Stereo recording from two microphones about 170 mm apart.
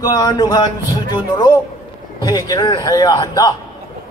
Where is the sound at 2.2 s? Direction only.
20° left (ahead or behind).